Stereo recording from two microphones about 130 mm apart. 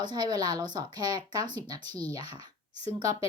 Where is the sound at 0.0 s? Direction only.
35° right (ahead or behind).